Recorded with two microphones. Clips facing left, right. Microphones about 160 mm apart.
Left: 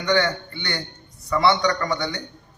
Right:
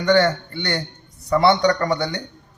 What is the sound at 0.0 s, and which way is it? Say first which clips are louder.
A man's voice: right 5 dB; 40° right (ahead or behind).